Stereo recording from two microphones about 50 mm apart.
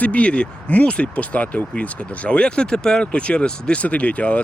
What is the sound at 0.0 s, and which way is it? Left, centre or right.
Speech, left.